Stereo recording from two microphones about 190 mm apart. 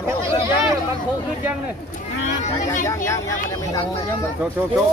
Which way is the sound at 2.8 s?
15° left (ahead or behind).